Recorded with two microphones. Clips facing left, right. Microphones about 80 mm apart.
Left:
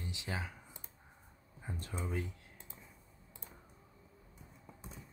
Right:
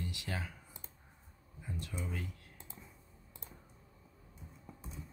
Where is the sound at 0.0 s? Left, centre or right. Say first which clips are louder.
Even; left.